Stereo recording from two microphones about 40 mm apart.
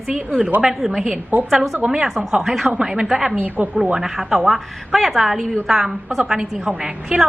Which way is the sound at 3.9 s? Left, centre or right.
Centre.